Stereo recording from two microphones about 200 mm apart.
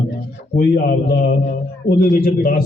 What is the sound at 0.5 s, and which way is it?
A man's voice, 45° left (ahead or behind).